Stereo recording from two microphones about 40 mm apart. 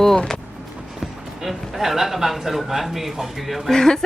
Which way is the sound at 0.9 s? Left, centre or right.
Centre.